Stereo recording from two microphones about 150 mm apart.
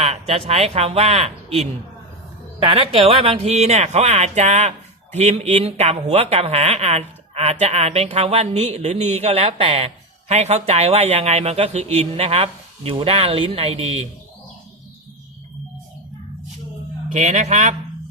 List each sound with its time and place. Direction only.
0.0 s speech: 40° right (ahead or behind)
17.1 s speech: 50° right (ahead or behind)